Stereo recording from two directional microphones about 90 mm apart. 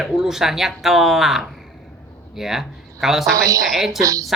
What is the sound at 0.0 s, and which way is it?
Speech, 5° right (ahead or behind).